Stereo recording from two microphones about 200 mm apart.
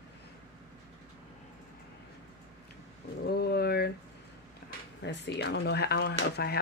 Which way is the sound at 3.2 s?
55° left (ahead or behind).